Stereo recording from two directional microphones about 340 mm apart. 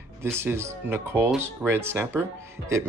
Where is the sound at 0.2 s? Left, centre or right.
Centre.